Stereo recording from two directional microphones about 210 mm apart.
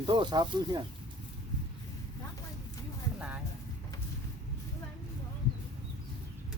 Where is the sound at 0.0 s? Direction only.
20° right (ahead or behind).